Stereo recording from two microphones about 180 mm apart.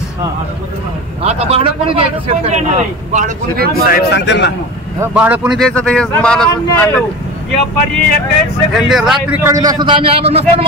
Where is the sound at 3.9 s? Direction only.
65° left (ahead or behind).